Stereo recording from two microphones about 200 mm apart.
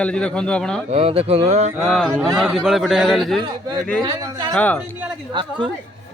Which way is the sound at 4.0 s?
20° right (ahead or behind).